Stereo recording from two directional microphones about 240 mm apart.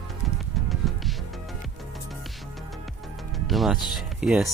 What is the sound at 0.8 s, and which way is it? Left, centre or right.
Music, centre.